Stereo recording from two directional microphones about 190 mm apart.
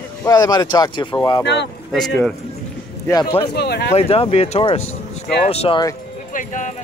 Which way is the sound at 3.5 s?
60° left (ahead or behind).